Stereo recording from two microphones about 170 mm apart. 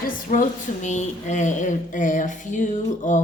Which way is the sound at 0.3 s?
45° left (ahead or behind).